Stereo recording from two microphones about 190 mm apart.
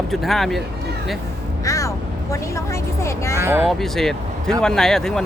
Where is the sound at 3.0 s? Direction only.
15° left (ahead or behind).